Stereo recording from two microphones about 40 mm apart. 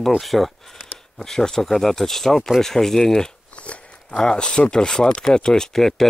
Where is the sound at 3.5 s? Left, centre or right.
Left.